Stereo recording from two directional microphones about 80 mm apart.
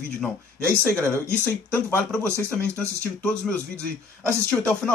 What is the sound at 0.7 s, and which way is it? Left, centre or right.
Speech, centre.